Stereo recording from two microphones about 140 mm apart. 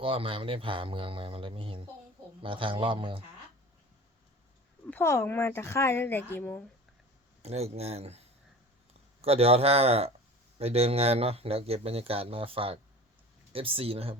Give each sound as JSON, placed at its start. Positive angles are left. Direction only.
{"t": 0.0, "sound": "speech", "side_deg": -40}
{"t": 4.9, "sound": "speech", "side_deg": 15}
{"t": 7.4, "sound": "a man's voice", "side_deg": -50}